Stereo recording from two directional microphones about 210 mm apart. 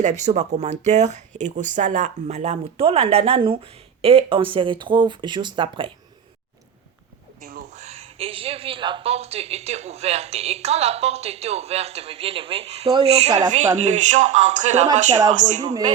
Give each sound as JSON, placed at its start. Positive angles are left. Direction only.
{"t": 0.0, "sound": "speech", "side_deg": -35}
{"t": 7.4, "sound": "speech", "side_deg": -35}